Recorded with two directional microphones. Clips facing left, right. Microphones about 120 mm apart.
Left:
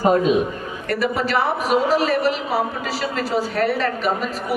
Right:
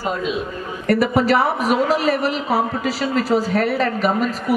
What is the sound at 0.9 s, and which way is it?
Speech, 40° right (ahead or behind).